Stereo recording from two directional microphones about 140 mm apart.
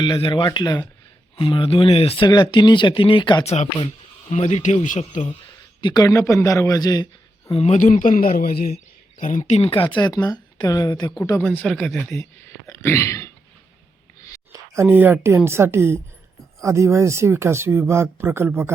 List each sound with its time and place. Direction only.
0.0 s speech: 35° left (ahead or behind)
3.4 s speech: 50° left (ahead or behind)
5.8 s a man's voice: 30° left (ahead or behind)
7.5 s speech: 50° left (ahead or behind); by 8.7 s 90° left
9.1 s speech: 65° left (ahead or behind); by 11.1 s 25° left (ahead or behind)
11.2 s speech: 15° left (ahead or behind)
14.5 s speech: 20° right (ahead or behind)